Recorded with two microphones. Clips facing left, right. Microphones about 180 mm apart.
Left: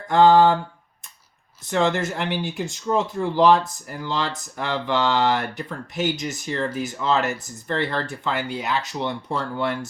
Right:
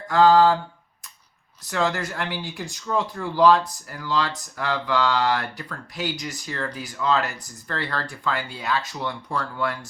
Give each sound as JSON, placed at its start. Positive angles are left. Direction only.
{"t": 0.1, "sound": "speech", "side_deg": 25}
{"t": 1.6, "sound": "speech", "side_deg": 25}